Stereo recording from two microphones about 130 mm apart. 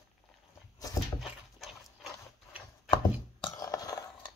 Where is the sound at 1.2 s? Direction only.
5° right (ahead or behind).